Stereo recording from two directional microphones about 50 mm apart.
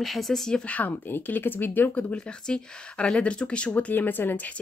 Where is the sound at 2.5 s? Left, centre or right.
Centre.